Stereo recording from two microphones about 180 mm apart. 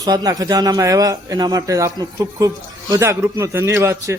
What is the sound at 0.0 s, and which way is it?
A man's voice, 20° right (ahead or behind).